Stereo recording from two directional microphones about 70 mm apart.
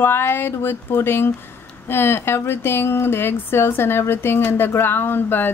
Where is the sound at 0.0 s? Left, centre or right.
Left.